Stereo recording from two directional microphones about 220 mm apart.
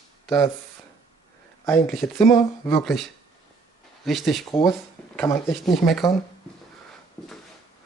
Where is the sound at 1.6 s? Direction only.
Centre (ahead or behind).